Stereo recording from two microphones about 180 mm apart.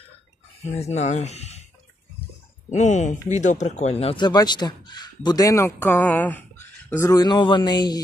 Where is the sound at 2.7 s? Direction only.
40° left (ahead or behind).